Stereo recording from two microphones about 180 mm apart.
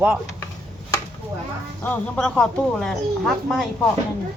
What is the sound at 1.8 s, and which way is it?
Speech, 10° left (ahead or behind).